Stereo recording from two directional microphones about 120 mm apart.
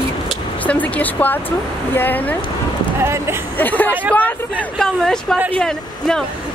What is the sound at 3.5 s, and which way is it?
Speech, 15° left (ahead or behind).